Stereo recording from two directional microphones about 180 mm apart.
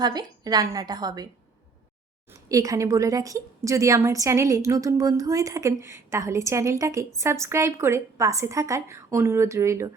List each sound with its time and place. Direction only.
0.0 s a woman's voice: 20° right (ahead or behind)
2.5 s a woman's voice: 20° right (ahead or behind)